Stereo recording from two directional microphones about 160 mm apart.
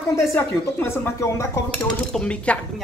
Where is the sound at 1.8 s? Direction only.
5° left (ahead or behind).